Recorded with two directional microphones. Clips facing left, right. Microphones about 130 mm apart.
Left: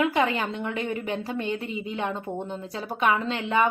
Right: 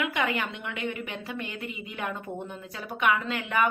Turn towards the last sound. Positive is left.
turn(degrees=25)  # may be behind; listen again after turning